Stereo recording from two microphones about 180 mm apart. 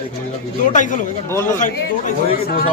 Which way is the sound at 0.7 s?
45° left (ahead or behind).